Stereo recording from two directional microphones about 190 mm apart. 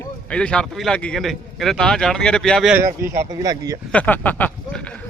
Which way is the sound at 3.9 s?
5° left (ahead or behind).